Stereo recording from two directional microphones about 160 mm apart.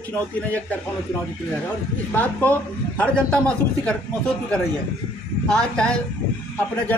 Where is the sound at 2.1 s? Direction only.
10° left (ahead or behind).